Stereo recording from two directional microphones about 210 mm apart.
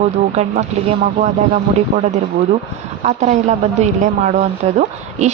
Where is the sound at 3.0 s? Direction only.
35° right (ahead or behind).